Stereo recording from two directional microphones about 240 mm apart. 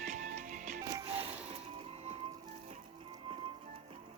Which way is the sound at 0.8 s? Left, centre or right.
Centre.